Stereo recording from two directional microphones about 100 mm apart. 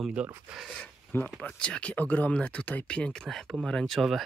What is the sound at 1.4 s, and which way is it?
Speech, 10° left (ahead or behind).